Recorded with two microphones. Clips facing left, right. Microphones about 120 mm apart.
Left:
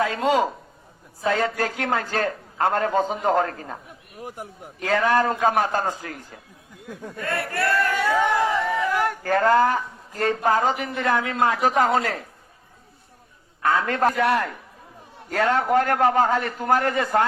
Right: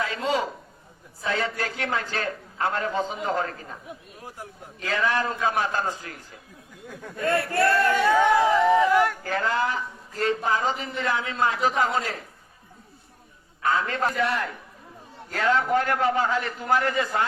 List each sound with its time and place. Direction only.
0.0 s a man's voice: 50° left (ahead or behind)
4.8 s speech: 45° left (ahead or behind)
7.2 s speech: 25° right (ahead or behind)
8.3 s speech: 10° right (ahead or behind)
9.2 s speech: 50° left (ahead or behind)
13.6 s speech: 55° left (ahead or behind)